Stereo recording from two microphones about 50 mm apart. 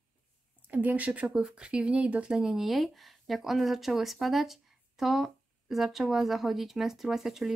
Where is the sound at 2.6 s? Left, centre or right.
Centre.